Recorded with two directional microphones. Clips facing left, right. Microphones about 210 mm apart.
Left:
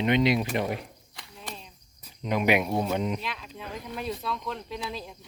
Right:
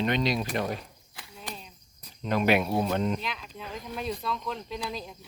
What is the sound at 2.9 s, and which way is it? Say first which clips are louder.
Speech: right 1 dB; 10° left (ahead or behind).